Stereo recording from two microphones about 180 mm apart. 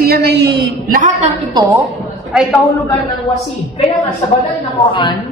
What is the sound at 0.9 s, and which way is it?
Speech, 45° right (ahead or behind).